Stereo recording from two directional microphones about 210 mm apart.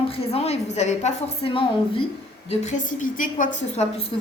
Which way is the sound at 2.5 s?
35° left (ahead or behind).